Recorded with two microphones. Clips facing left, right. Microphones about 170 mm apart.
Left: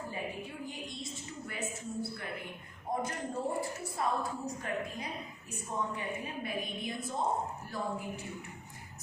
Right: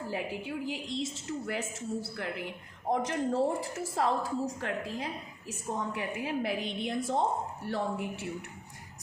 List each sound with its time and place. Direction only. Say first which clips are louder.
0.1 s a woman's voice: right 5 dB; 90° right